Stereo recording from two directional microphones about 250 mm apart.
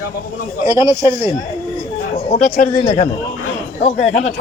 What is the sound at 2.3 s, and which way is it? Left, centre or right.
Speech, left.